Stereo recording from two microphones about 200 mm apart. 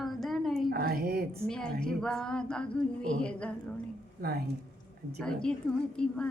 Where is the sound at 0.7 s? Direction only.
50° right (ahead or behind).